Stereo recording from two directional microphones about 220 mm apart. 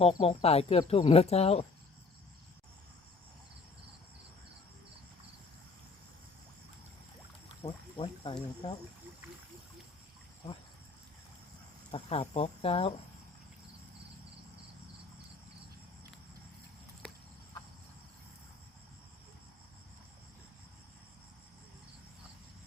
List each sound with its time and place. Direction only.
0.0 s speech: 25° left (ahead or behind)
7.6 s a sound: 25° left (ahead or behind)
11.9 s speech: 30° left (ahead or behind)